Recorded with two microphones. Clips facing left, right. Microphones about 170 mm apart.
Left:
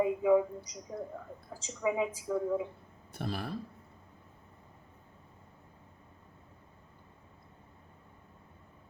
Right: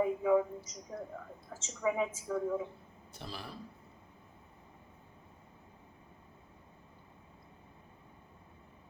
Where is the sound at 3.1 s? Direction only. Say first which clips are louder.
Left 8 dB; 55° left (ahead or behind).